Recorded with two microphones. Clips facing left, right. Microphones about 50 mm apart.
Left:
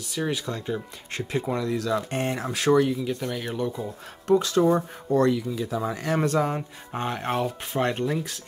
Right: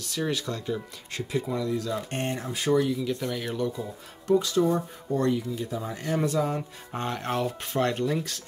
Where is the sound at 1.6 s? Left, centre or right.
Left.